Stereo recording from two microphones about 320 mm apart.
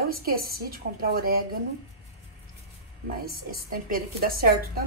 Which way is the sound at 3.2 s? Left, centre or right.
Right.